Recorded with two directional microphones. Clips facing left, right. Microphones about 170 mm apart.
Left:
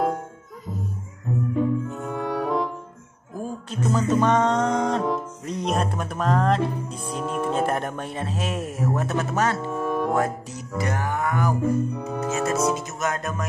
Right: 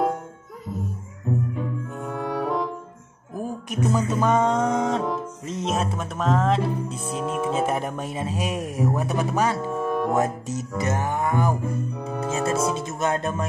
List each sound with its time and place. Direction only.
2.0 s music: centre (ahead or behind)
3.3 s music: 15° right (ahead or behind)
9.7 s music: centre (ahead or behind)
10.1 s speech: 20° right (ahead or behind)
12.0 s organ: centre (ahead or behind)
12.3 s speech: 30° right (ahead or behind)